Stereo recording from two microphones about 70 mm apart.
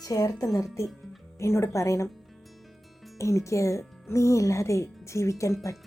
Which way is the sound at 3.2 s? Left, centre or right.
Left.